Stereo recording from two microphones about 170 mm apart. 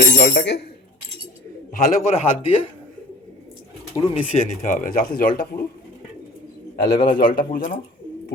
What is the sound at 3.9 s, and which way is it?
Speech, 20° left (ahead or behind).